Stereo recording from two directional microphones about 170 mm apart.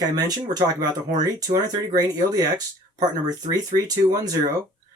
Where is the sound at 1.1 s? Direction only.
45° right (ahead or behind).